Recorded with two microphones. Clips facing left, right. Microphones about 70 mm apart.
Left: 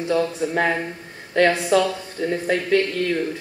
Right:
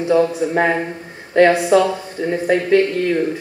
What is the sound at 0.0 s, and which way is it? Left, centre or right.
A woman's voice, right.